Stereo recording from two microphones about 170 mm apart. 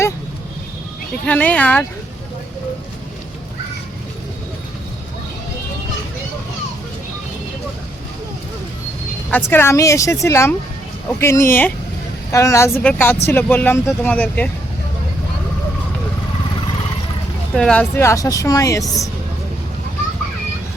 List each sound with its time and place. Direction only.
1.3 s speech: 10° left (ahead or behind)
9.3 s speech: 10° left (ahead or behind)
17.5 s a woman's voice: 5° left (ahead or behind)